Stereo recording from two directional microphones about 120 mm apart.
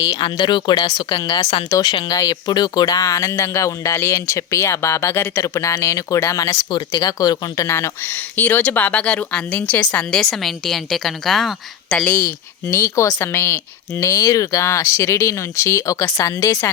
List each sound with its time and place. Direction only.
0.0 s speech: 40° left (ahead or behind); by 12.0 s centre (ahead or behind)
12.0 s speech: 15° left (ahead or behind)